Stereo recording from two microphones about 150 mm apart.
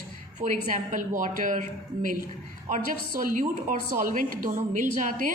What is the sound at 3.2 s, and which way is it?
A woman's voice, 60° right (ahead or behind).